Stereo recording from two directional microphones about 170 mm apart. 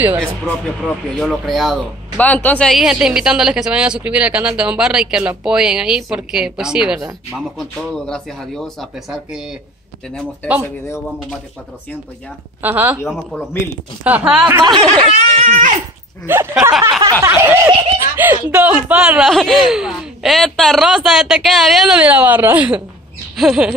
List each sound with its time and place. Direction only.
0.2 s speech: 5° left (ahead or behind)
12.6 s speech: 10° right (ahead or behind)
13.3 s speech: 5° left (ahead or behind)
14.0 s speech: 5° right (ahead or behind)
14.6 s speech: 25° right (ahead or behind)
16.3 s speech: 15° right (ahead or behind)
23.3 s a sound: centre (ahead or behind)